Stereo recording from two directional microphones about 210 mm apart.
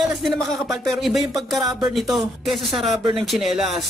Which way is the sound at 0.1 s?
Centre (ahead or behind).